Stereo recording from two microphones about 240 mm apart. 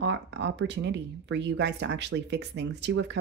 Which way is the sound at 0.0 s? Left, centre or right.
Right.